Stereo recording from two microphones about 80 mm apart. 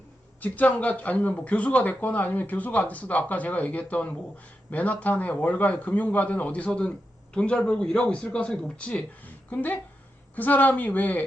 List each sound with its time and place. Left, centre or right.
0.3 s a man's voice: left